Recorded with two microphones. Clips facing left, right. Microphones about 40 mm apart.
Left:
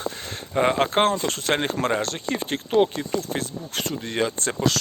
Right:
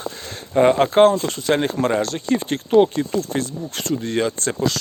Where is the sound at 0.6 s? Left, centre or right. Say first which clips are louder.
Right 6 dB; centre.